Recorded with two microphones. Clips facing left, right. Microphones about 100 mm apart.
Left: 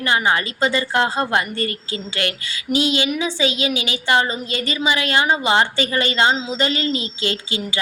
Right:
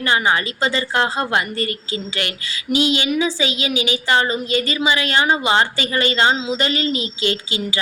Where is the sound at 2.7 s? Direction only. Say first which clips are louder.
Right 1 dB; 40° left (ahead or behind).